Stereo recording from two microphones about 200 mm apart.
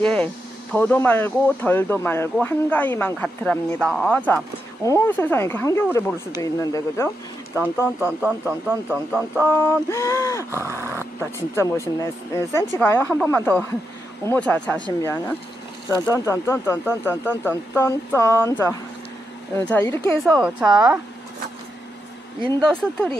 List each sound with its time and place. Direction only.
0.0 s a woman's voice: 5° left (ahead or behind)
8.0 s speech: 5° right (ahead or behind)
9.4 s speech: 10° left (ahead or behind)
10.5 s speech: 15° right (ahead or behind)
11.1 s speech: 10° left (ahead or behind)
20.2 s a woman's voice: 5° right (ahead or behind)
22.6 s a woman's voice: 5° left (ahead or behind)